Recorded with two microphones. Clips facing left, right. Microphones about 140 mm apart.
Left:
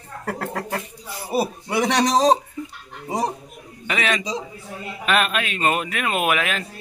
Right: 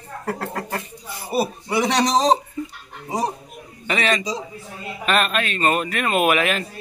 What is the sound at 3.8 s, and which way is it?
A man's voice, 5° left (ahead or behind).